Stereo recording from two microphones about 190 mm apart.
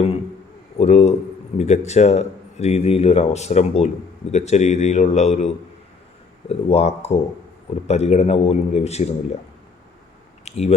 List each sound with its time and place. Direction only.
0.8 s a man's voice: 35° left (ahead or behind)
6.5 s speech: 35° left (ahead or behind)
10.4 s speech: 35° left (ahead or behind)